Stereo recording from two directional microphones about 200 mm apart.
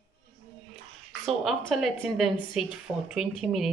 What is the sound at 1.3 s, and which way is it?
Speech, centre (ahead or behind).